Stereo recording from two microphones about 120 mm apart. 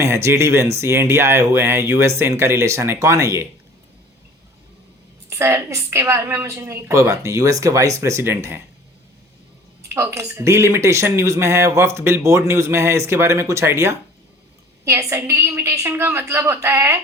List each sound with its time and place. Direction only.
0.0 s speech: 25° right (ahead or behind)
5.3 s speech: 25° right (ahead or behind)
9.9 s speech: 25° right (ahead or behind)